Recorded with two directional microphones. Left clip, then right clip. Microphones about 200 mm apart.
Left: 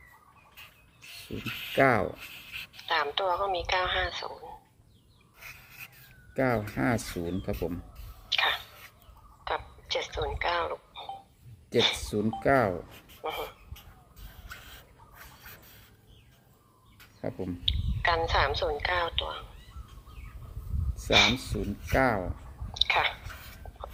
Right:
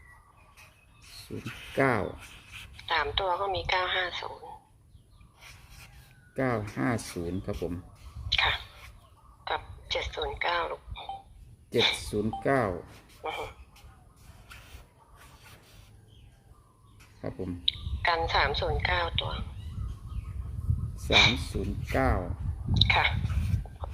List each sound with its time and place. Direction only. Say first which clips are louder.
1.5 s speech: left 6 dB; 30° left (ahead or behind)
1.7 s a woman's voice: left 3 dB; centre (ahead or behind)
6.3 s speech: left 2 dB; centre (ahead or behind)
8.3 s a sound: even; 10° left (ahead or behind)
9.4 s speech: even; 10° left (ahead or behind)
17.2 s a woman's voice: left 2 dB; centre (ahead or behind)
20.9 s speech: even; 10° left (ahead or behind)